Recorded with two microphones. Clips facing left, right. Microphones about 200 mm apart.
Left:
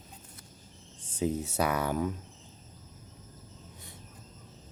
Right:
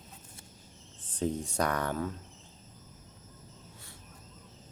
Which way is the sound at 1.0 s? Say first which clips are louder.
Left 2 dB; 10° left (ahead or behind).